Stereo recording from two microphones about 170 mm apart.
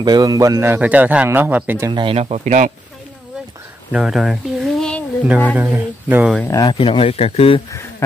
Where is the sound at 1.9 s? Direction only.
30° right (ahead or behind); by 2.7 s 45° right (ahead or behind).